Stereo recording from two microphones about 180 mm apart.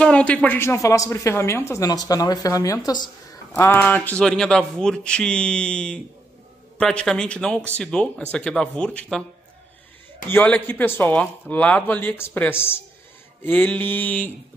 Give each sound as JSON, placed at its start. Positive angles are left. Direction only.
{"t": 0.0, "sound": "a woman's voice", "side_deg": 5}
{"t": 10.2, "sound": "a woman's voice", "side_deg": 10}